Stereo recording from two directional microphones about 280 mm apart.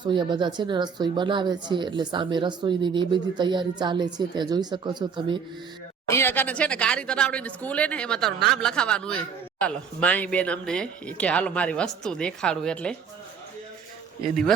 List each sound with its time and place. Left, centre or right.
0.0 s speech: centre
6.1 s speech: centre